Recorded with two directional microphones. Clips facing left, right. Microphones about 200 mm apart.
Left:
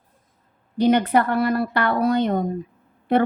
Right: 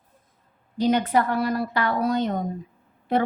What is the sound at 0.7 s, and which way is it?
A woman's voice, 60° left (ahead or behind).